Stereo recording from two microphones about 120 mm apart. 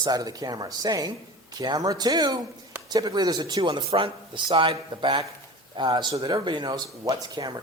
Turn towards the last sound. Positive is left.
turn(degrees=-35)  # may be behind; listen again after turning